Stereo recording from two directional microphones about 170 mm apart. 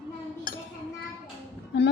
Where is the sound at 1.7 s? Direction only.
90° left.